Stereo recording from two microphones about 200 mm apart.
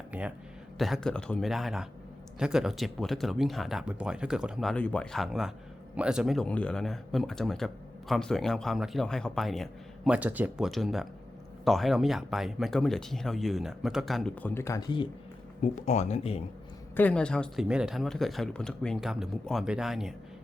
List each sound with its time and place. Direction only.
0.1 s speech: 5° right (ahead or behind); by 15.0 s 20° left (ahead or behind)
15.6 s speech: 35° left (ahead or behind)
16.9 s speech: 10° left (ahead or behind)